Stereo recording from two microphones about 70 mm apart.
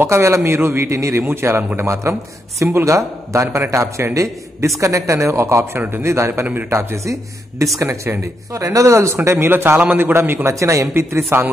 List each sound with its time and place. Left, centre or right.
0.0 s a man's voice: right
5.8 s a man's voice: right
9.8 s a man's voice: right
10.5 s a man's voice: right